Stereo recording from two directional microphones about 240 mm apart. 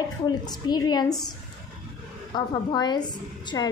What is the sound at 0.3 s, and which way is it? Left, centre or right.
Speech, centre.